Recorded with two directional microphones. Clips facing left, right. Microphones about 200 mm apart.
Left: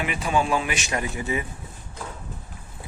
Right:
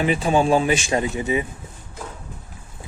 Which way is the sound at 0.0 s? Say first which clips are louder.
Right 6 dB; 30° right (ahead or behind).